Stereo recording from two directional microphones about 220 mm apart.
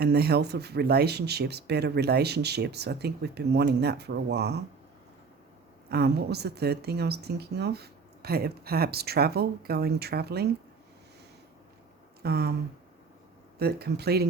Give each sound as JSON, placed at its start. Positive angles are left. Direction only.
{"t": 0.0, "sound": "speech", "side_deg": -45}
{"t": 5.9, "sound": "speech", "side_deg": -50}
{"t": 12.2, "sound": "speech", "side_deg": -45}
{"t": 13.6, "sound": "speech", "side_deg": -45}